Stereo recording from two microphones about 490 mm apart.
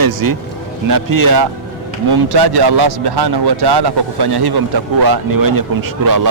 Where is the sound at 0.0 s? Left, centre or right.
Right.